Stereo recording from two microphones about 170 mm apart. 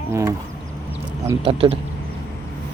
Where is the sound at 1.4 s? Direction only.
35° right (ahead or behind).